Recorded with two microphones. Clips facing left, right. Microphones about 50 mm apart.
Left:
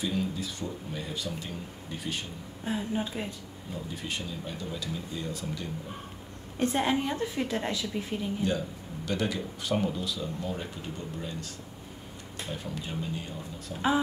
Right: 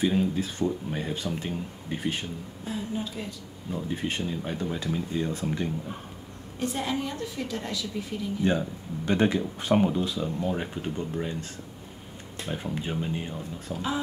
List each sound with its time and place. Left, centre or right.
0.0 s speech: right
2.6 s a woman's voice: left
3.7 s speech: right
6.6 s a woman's voice: left
8.5 s speech: right
12.4 s speech: right
13.7 s a woman's voice: left